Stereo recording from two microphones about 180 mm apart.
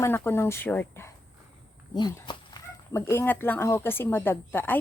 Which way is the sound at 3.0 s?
10° left (ahead or behind).